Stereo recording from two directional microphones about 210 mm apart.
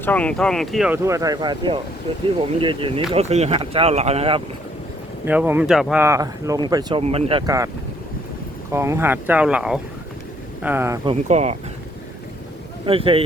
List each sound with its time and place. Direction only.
0.0 s speech: 5° left (ahead or behind)
1.0 s speech: 15° right (ahead or behind)
5.2 s speech: 10° right (ahead or behind)
7.0 s speech: 30° right (ahead or behind)
8.7 s speech: 10° right (ahead or behind)
11.0 s speech: 30° right (ahead or behind)
12.8 s speech: 25° right (ahead or behind)